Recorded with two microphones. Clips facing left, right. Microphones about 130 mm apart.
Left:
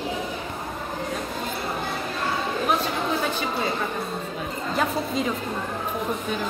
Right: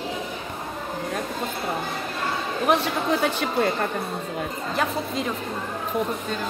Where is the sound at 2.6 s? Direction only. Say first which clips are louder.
Right 5 dB; 70° right (ahead or behind).